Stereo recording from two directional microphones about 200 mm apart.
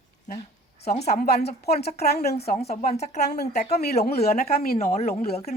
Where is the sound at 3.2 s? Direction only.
55° left (ahead or behind).